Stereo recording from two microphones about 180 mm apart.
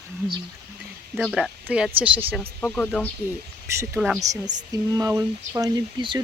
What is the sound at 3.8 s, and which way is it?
Speech, 10° right (ahead or behind).